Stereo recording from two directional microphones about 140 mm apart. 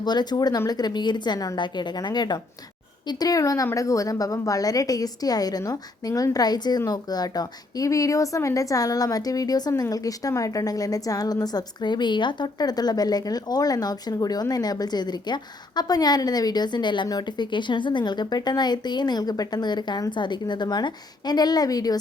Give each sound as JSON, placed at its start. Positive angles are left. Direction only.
{"t": 0.0, "sound": "a woman's voice", "side_deg": 30}